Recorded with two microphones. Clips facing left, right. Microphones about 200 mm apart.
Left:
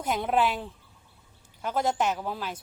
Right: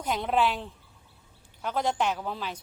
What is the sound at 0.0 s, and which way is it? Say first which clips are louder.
A woman's voice: left 1 dB; 5° left (ahead or behind).